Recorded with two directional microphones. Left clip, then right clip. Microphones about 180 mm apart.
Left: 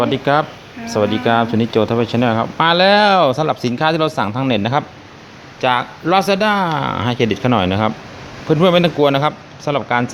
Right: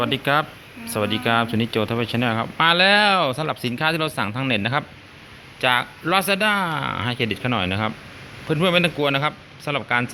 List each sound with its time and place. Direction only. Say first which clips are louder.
0.0 s speech: left 5 dB; 10° left (ahead or behind)